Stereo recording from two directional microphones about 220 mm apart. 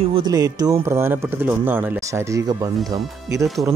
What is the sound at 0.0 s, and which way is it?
Speech, 20° right (ahead or behind).